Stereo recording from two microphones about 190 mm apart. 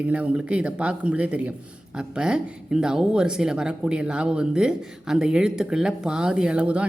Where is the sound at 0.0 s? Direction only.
5° right (ahead or behind).